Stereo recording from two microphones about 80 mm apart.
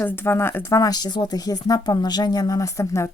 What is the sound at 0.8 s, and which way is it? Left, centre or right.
Speech, left.